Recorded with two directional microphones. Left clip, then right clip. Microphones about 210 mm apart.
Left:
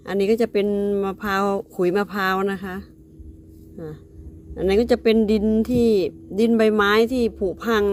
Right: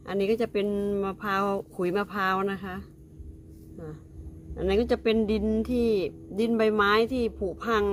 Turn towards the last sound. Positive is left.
turn(degrees=30)  # may be behind; listen again after turning